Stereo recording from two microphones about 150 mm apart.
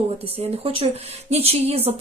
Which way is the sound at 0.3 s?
35° right (ahead or behind).